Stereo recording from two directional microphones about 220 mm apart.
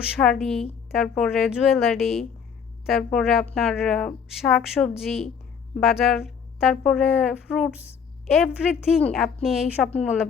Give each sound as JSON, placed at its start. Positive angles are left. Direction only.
{"t": 0.2, "sound": "a woman's voice", "side_deg": 0}